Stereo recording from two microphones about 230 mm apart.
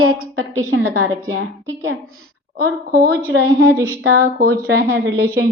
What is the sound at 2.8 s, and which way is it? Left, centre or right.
Speech, right.